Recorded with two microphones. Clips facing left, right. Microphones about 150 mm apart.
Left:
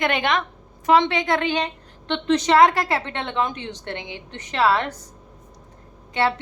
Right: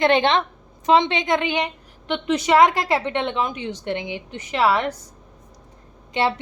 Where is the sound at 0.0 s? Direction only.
30° right (ahead or behind); by 4.9 s 15° right (ahead or behind).